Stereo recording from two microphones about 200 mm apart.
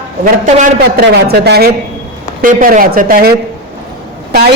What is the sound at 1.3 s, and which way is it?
A man's voice, 50° right (ahead or behind).